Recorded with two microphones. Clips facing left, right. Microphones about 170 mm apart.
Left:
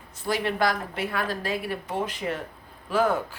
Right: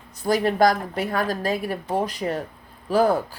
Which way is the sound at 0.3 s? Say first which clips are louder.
Right 6 dB; 40° right (ahead or behind).